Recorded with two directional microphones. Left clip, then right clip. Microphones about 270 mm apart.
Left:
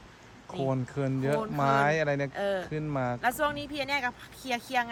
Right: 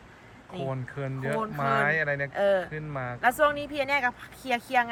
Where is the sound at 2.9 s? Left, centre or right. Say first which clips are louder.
Left 3 dB; left.